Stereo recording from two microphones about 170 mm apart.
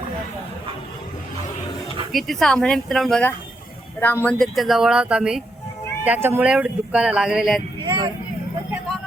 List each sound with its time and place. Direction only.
2.1 s speech: centre (ahead or behind)
7.9 s vehicle: 30° right (ahead or behind)